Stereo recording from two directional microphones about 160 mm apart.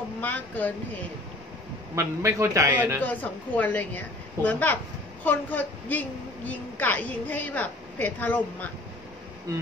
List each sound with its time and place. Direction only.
0.2 s a woman's voice: 10° left (ahead or behind)
2.0 s a man's voice: 20° right (ahead or behind)
3.0 s a woman's voice: 10° left (ahead or behind)
9.5 s speech: 20° right (ahead or behind)